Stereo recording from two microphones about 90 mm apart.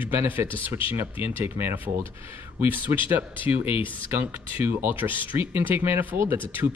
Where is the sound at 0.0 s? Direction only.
20° right (ahead or behind).